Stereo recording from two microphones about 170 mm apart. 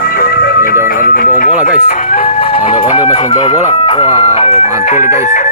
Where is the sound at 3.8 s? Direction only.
30° left (ahead or behind).